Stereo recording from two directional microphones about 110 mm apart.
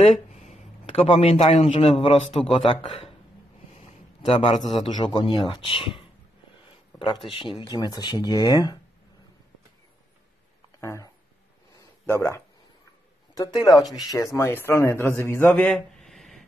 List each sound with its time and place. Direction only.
0.3 s a man's voice: 90° left; by 3.0 s 65° left (ahead or behind)
3.7 s a sound: 80° left
4.6 s speech: 60° left (ahead or behind)
7.1 s speech: 50° left (ahead or behind)
7.7 s speech: 40° left (ahead or behind)
10.8 s speech: 25° left (ahead or behind)
12.1 s speech: 25° left (ahead or behind)
15.5 s a sound: 5° left (ahead or behind)